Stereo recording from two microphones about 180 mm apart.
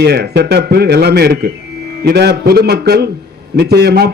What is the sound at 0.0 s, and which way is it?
A man's voice, 60° right (ahead or behind).